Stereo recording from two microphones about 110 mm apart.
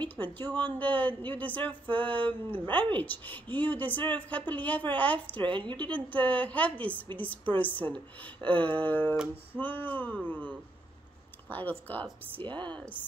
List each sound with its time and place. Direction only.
0.0 s speech: 15° left (ahead or behind)
12.4 s speech: 45° right (ahead or behind)
12.6 s speech: 10° left (ahead or behind)